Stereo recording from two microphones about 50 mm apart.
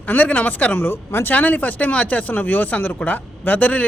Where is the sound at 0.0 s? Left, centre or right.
Left.